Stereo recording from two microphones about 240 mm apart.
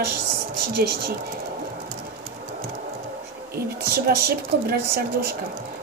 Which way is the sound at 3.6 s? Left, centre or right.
Right.